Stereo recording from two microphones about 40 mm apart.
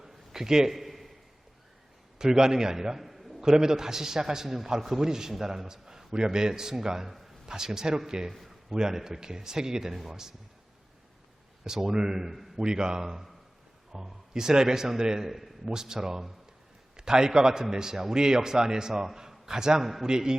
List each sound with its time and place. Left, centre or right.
0.3 s a sound: centre
2.1 s a man's voice: centre
3.4 s a man's voice: centre
8.3 s a man's voice: centre
8.7 s a man's voice: centre
11.6 s a man's voice: centre
12.5 s a man's voice: centre
15.3 s a man's voice: centre
19.8 s a man's voice: centre
20.1 s a man's voice: centre